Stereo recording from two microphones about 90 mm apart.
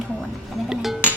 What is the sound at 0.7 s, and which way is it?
Speech, 5° right (ahead or behind).